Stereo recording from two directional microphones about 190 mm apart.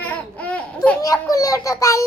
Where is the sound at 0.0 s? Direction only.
10° left (ahead or behind).